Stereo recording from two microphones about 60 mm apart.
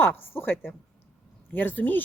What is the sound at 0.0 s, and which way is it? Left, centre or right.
A woman's voice, left.